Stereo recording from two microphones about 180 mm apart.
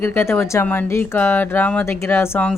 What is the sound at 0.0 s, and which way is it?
Speech, 10° left (ahead or behind).